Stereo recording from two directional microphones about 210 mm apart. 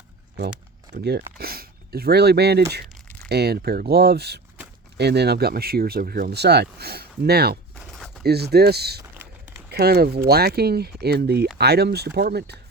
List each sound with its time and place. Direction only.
0.9 s speech: 50° right (ahead or behind)
7.9 s a sound: centre (ahead or behind)
8.2 s speech: 50° right (ahead or behind)